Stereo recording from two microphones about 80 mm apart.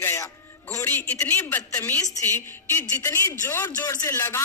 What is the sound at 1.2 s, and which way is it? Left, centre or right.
A man's voice, left.